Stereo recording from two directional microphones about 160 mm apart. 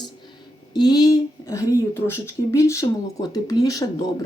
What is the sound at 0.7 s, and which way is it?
Speech, 25° left (ahead or behind).